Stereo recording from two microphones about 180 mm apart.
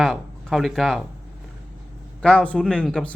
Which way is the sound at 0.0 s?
Centre (ahead or behind).